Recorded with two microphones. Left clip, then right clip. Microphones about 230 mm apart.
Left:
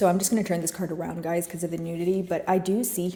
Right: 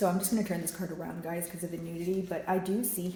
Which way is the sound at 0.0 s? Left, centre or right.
Left.